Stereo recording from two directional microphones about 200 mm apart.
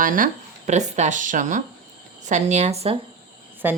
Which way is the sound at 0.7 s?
35° right (ahead or behind).